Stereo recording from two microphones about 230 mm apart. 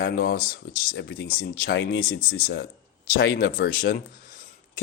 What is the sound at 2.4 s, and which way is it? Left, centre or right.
Mantra, left.